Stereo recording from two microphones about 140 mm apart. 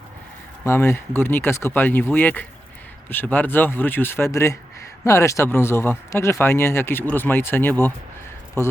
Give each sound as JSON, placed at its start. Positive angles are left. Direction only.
{"t": 0.6, "sound": "speech", "side_deg": 20}